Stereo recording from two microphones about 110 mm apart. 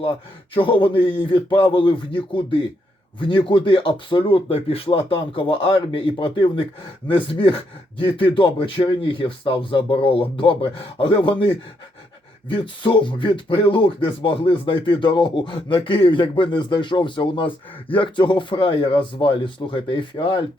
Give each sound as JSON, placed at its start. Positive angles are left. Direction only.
{"t": 0.5, "sound": "speech", "side_deg": 50}